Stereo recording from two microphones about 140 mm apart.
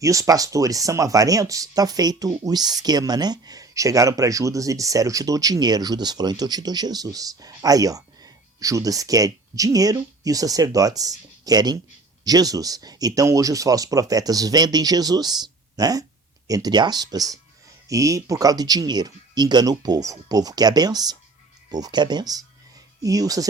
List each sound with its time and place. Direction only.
0.0 s speech: 25° right (ahead or behind)